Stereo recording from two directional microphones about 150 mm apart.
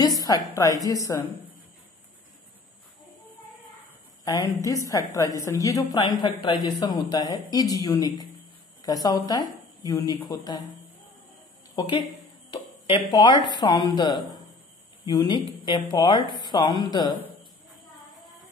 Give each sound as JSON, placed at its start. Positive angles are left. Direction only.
{"t": 0.0, "sound": "music", "side_deg": 25}
{"t": 0.6, "sound": "a woman's voice", "side_deg": 20}
{"t": 4.2, "sound": "a sound", "side_deg": 25}
{"t": 4.6, "sound": "a woman's voice", "side_deg": 20}
{"t": 11.7, "sound": "a woman's voice", "side_deg": 25}